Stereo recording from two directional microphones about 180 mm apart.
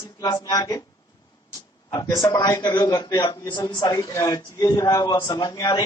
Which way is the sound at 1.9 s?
20° left (ahead or behind).